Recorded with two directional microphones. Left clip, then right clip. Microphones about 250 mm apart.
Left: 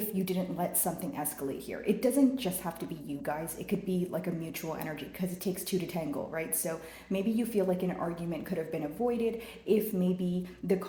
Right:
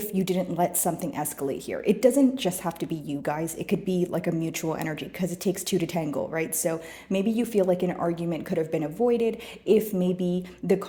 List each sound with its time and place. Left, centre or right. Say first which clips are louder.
0.2 s speech: right 9 dB; right